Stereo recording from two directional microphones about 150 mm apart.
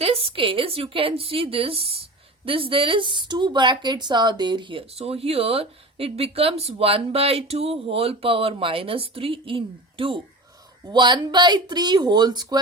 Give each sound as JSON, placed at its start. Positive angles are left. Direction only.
{"t": 0.0, "sound": "speech", "side_deg": -40}